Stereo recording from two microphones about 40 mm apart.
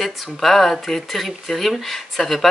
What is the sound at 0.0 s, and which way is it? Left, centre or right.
Speech, centre.